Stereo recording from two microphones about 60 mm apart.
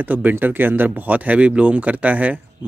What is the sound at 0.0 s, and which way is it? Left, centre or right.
Speech, right.